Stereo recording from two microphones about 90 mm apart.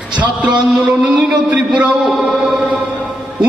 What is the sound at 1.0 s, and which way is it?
A man's voice, 10° right (ahead or behind).